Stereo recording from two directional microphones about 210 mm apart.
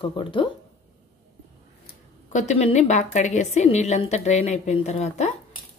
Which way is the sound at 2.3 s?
35° left (ahead or behind).